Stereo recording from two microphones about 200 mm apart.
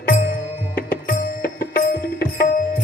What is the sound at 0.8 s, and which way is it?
Music, 50° left (ahead or behind).